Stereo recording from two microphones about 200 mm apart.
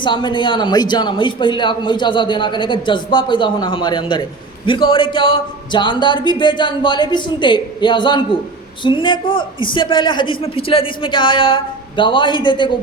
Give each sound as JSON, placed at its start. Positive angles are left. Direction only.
{"t": 0.0, "sound": "a man's voice", "side_deg": 25}